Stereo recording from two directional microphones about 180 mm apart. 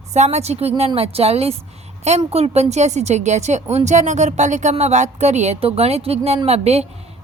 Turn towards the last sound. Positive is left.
turn(degrees=-35)  # may be behind; listen again after turning